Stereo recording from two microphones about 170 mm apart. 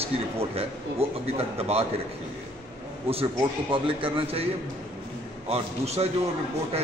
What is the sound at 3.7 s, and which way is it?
Speech, 30° right (ahead or behind).